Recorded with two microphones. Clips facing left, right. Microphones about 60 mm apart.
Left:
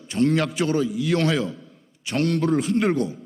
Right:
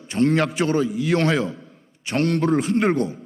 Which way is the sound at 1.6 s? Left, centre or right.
Right.